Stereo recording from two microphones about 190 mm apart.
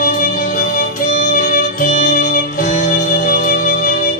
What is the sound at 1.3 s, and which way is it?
Music, 45° left (ahead or behind).